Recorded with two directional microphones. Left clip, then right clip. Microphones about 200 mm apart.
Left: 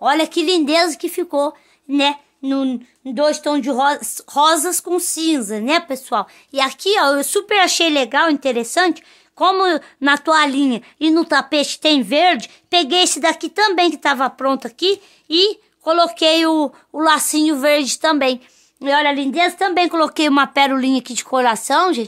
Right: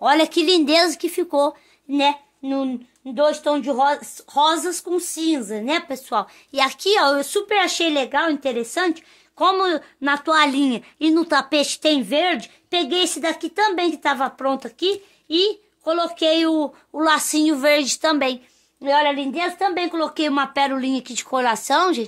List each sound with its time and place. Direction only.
0.0 s speech: 10° left (ahead or behind)
1.9 s speech: 25° left (ahead or behind)
2.4 s speech: 45° left (ahead or behind); by 10.4 s 30° left (ahead or behind)
10.4 s speech: 15° left (ahead or behind)
16.9 s speech: 20° left (ahead or behind)
18.8 s a woman's voice: 50° left (ahead or behind); by 22.0 s 15° left (ahead or behind)